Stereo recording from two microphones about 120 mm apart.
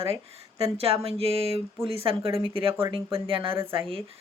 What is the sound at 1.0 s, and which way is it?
A woman's voice, 55° right (ahead or behind).